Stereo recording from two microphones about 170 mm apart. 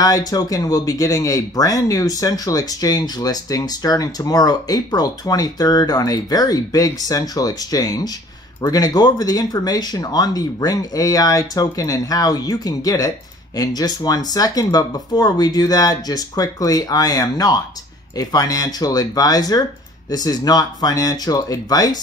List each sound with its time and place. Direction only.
0.0 s speech: 20° left (ahead or behind)